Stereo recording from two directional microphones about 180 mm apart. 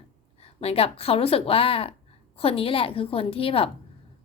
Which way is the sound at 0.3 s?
35° left (ahead or behind).